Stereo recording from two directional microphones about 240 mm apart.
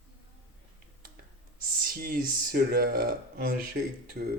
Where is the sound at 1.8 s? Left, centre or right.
Right.